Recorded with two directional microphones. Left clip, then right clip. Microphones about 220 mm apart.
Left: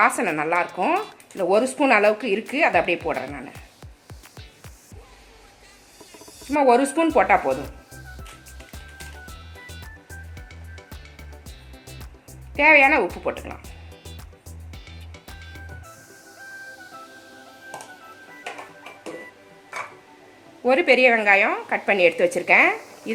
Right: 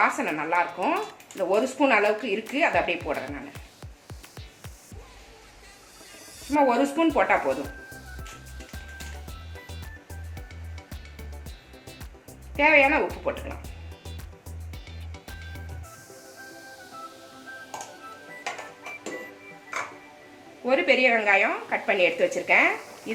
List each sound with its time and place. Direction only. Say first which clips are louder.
0.0 s a woman's voice: left 4 dB; 55° left (ahead or behind)
6.1 s a sound: left 2 dB; centre (ahead or behind)
6.6 s speech: left 4 dB; 50° left (ahead or behind)
7.5 s music: left 3 dB; centre (ahead or behind)
9.2 s music: left 3 dB; centre (ahead or behind)
12.5 s speech: left 4 dB; 50° left (ahead or behind)
13.6 s music: left 1 dB; centre (ahead or behind)
20.7 s speech: left 4 dB; 50° left (ahead or behind)